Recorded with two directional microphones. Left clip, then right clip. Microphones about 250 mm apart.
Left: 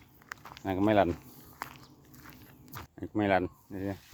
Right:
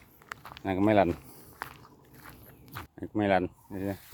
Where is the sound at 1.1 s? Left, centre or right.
Centre.